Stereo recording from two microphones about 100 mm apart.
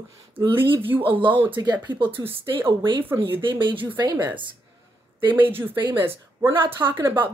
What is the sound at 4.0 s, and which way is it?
Speech, 45° right (ahead or behind).